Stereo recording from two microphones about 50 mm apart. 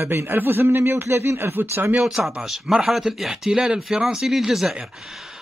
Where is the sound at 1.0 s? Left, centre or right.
Right.